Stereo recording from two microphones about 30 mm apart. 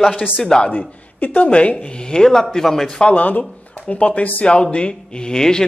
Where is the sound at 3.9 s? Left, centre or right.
Left.